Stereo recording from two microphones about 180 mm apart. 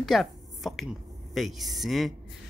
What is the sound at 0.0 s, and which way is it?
Speech, centre (ahead or behind).